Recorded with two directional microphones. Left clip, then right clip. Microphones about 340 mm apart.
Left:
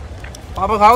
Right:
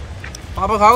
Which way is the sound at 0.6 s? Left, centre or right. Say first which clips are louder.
Left 1 dB; centre.